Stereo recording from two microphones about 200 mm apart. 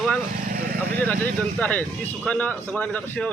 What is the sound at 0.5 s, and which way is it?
Vehicle, 50° right (ahead or behind).